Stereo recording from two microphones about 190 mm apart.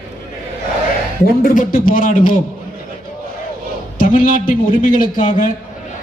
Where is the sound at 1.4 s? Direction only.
45° left (ahead or behind).